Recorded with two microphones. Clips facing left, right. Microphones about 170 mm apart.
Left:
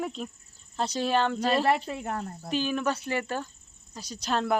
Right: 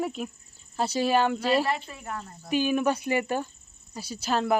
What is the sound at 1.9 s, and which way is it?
Speech, 70° left (ahead or behind).